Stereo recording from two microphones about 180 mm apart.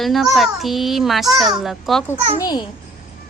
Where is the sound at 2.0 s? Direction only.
20° left (ahead or behind).